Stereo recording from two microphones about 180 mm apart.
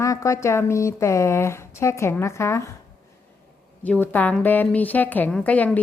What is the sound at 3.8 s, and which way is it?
Speech, 10° left (ahead or behind).